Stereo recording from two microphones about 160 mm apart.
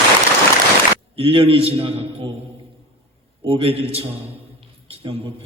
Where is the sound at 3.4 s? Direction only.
35° right (ahead or behind).